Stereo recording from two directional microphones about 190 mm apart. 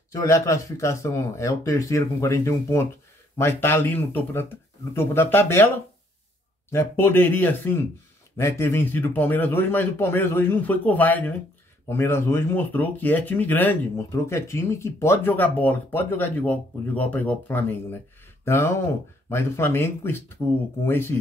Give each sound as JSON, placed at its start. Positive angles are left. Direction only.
{"t": 0.1, "sound": "speech", "side_deg": 15}
{"t": 6.7, "sound": "speech", "side_deg": 10}